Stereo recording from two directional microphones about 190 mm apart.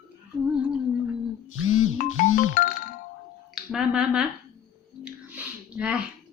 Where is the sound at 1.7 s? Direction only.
90° left.